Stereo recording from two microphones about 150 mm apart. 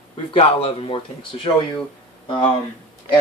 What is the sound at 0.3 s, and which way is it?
Speech, 40° left (ahead or behind).